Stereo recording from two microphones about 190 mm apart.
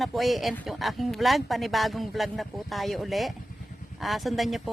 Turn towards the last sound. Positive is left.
turn(degrees=0)  # may be behind; listen again after turning